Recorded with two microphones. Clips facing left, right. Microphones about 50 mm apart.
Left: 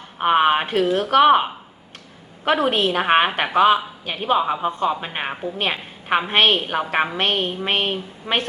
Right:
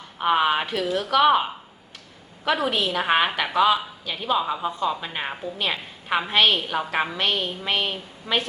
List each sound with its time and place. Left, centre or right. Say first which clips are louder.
0.2 s a woman's voice: left 4 dB; left